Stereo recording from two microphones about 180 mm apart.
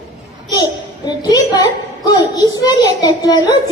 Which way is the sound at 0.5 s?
20° left (ahead or behind).